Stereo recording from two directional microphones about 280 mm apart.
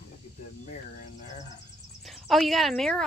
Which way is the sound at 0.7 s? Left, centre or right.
Left.